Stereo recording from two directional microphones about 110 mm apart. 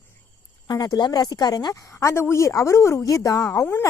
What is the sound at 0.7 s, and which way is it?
Speech, 35° left (ahead or behind).